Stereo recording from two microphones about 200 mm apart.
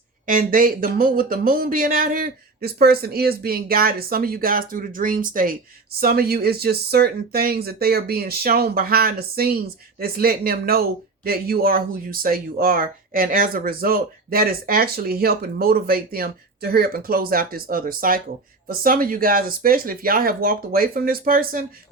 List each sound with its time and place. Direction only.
0.3 s speech: 45° right (ahead or behind)